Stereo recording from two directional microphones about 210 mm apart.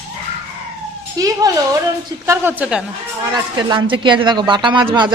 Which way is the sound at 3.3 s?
20° right (ahead or behind).